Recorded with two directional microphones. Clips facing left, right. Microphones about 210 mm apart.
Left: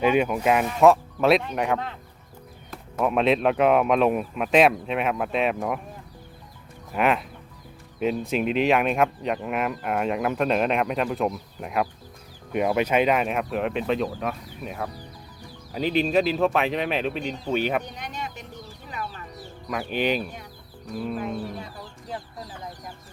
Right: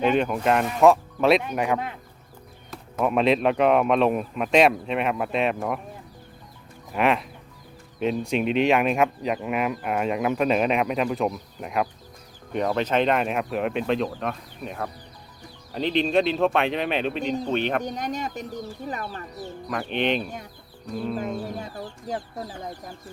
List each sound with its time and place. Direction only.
0.0 s speech: 10° left (ahead or behind)
6.9 s speech: centre (ahead or behind)
17.8 s speech: 45° right (ahead or behind)
19.6 s speech: 5° left (ahead or behind)